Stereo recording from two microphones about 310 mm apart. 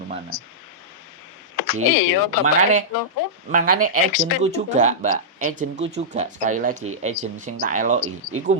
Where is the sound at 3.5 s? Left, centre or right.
Right.